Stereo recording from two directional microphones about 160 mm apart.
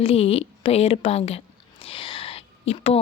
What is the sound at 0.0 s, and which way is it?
A woman's voice, 40° left (ahead or behind).